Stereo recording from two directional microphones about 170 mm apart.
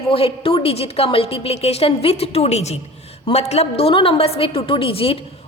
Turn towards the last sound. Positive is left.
turn(degrees=35)  # may be behind; listen again after turning